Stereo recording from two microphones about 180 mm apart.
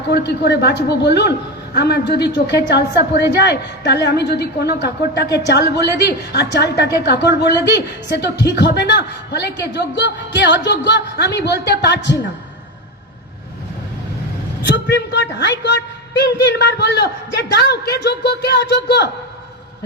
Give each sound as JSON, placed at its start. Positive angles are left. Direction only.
{"t": 0.1, "sound": "a woman's voice", "side_deg": 70}
{"t": 14.8, "sound": "a woman's voice", "side_deg": 70}